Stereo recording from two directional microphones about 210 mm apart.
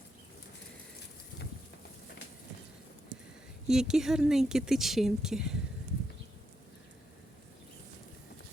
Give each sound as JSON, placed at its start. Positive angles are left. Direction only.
{"t": 3.7, "sound": "speech", "side_deg": 0}